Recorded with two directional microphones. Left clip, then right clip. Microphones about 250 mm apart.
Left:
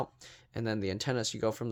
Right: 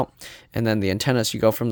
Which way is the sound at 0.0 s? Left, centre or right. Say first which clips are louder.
Right 11 dB; right.